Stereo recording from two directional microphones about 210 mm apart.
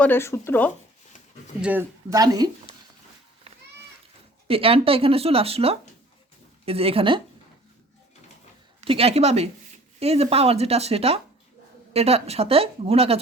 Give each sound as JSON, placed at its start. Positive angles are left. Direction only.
{"t": 0.0, "sound": "speech", "side_deg": 10}
{"t": 1.6, "sound": "a woman's voice", "side_deg": -10}
{"t": 4.4, "sound": "speech", "side_deg": -25}
{"t": 8.8, "sound": "speech", "side_deg": -25}